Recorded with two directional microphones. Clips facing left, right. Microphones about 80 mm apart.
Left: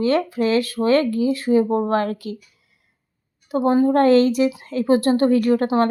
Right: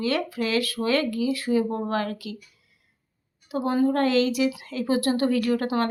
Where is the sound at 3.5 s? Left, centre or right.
Left.